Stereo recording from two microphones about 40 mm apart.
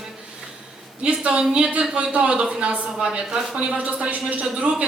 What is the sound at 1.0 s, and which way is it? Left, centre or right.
A man's voice, right.